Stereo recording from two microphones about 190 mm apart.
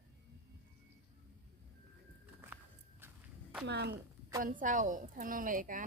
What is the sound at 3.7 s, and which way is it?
Speech, 60° right (ahead or behind).